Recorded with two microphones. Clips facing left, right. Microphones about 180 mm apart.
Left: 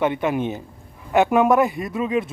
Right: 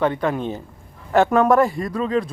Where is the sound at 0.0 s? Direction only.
20° left (ahead or behind).